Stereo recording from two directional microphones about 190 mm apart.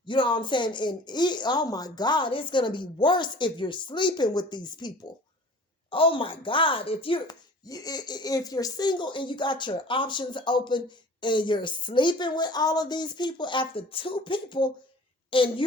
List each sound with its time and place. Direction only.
0.1 s speech: 25° left (ahead or behind)